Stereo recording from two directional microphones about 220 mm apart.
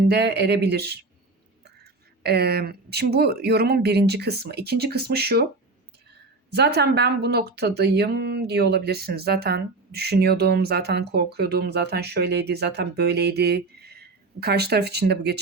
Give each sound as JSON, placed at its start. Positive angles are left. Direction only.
{"t": 0.1, "sound": "speech", "side_deg": -50}
{"t": 6.5, "sound": "speech", "side_deg": -50}